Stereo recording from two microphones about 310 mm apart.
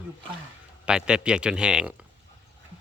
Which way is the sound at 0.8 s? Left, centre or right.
Centre.